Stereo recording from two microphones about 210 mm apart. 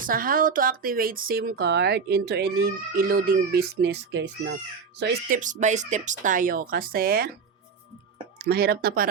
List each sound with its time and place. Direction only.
0.0 s speech: 40° right (ahead or behind)
5.4 s speech: 35° right (ahead or behind)
8.4 s speech: 45° right (ahead or behind)